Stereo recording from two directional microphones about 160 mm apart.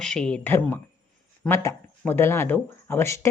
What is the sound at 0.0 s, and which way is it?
Speech, 5° left (ahead or behind).